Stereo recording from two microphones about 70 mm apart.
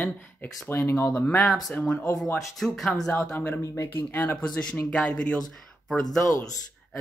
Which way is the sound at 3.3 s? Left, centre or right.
Left.